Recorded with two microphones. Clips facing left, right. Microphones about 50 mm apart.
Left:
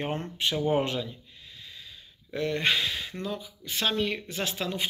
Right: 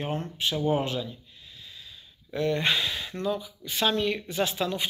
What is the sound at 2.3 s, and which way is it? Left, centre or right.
Speech, left.